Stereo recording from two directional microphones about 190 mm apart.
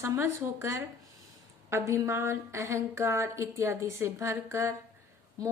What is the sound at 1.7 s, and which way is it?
A woman's voice, 15° right (ahead or behind).